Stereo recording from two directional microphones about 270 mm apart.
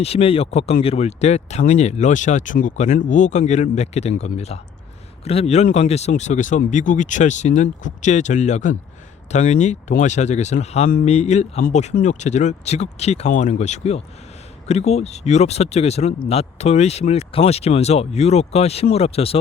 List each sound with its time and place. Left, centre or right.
0.0 s speech: left